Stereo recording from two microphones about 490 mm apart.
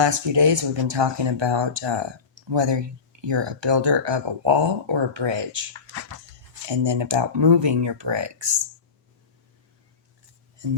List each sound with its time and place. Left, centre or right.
0.0 s speech: right